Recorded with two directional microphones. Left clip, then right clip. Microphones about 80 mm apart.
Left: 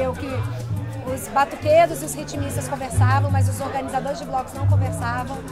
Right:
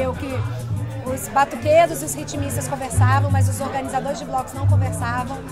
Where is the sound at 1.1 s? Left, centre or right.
Centre.